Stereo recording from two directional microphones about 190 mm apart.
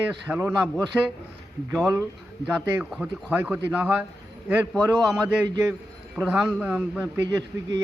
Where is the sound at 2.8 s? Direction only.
Centre (ahead or behind).